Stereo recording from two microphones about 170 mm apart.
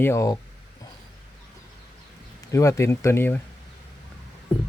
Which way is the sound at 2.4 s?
20° left (ahead or behind).